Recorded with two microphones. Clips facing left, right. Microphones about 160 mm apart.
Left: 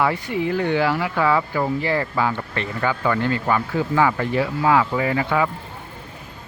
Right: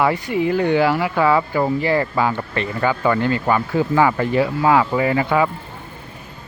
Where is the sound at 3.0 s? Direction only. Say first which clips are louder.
Right 3 dB; 30° right (ahead or behind).